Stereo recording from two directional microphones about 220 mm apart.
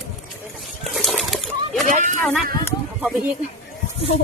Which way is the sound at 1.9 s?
35° right (ahead or behind).